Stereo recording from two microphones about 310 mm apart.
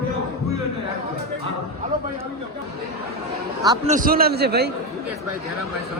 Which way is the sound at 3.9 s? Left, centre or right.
Right.